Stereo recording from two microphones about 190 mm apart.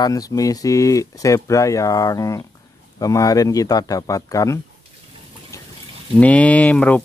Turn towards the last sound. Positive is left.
turn(degrees=10)  # may be behind; listen again after turning